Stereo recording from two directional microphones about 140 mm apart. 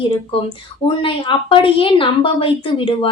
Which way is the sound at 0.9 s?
40° left (ahead or behind).